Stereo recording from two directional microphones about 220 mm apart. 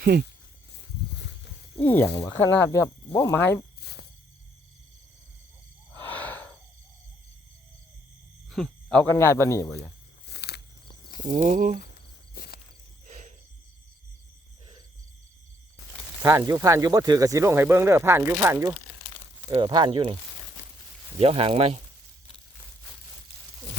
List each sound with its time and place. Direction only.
0.0 s speech: 45° right (ahead or behind)
1.8 s speech: 10° left (ahead or behind)
3.8 s a sound: 45° left (ahead or behind)
6.1 s gasp: 5° left (ahead or behind)
8.4 s speech: centre (ahead or behind)
10.2 s a sound: 50° left (ahead or behind)
11.3 s speech: 35° right (ahead or behind)
12.3 s a sound: 45° left (ahead or behind)
16.2 s speech: 15° right (ahead or behind)
21.2 s speech: 25° right (ahead or behind)